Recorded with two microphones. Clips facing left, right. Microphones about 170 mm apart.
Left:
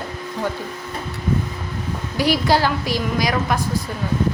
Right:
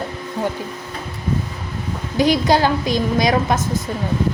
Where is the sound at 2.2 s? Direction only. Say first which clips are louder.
Right 3 dB; 20° right (ahead or behind).